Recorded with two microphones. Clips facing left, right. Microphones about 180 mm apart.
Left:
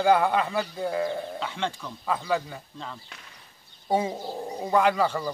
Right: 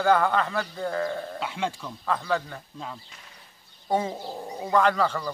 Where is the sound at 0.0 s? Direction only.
10° left (ahead or behind).